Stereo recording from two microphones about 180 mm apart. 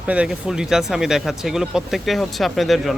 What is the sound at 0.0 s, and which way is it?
A man's voice, 5° right (ahead or behind).